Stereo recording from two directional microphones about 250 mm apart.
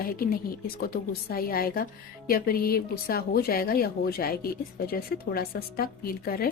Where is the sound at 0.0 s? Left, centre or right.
Left.